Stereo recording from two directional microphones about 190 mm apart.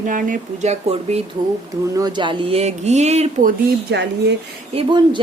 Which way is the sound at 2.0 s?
25° right (ahead or behind).